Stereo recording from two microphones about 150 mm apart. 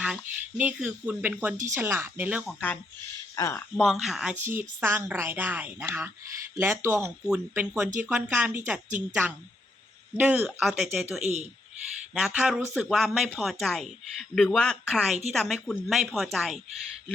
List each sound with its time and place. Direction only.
0.0 s speech: 5° right (ahead or behind)
2.5 s speech: 10° left (ahead or behind)
3.3 s speech: 20° left (ahead or behind)
3.8 s speech: centre (ahead or behind)
4.5 s speech: 15° right (ahead or behind)
11.2 s a man's voice: 50° right (ahead or behind)
12.1 s speech: 5° right (ahead or behind)